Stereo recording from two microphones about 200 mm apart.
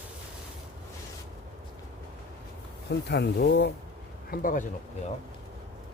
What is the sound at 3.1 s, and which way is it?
Speech, 55° left (ahead or behind).